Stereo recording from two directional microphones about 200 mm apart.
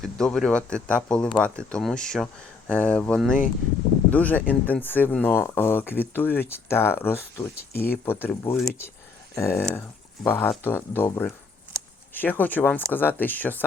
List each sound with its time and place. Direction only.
0.0 s speech: centre (ahead or behind)
7.7 s speech: 50° left (ahead or behind)
8.0 s speech: 10° left (ahead or behind)